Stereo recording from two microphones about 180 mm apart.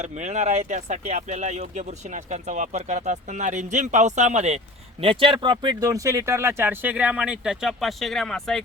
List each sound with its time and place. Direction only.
0.0 s speech: 40° right (ahead or behind); by 8.6 s centre (ahead or behind)